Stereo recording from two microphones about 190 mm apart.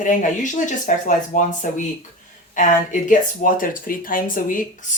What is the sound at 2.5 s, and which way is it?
Speech, 45° left (ahead or behind).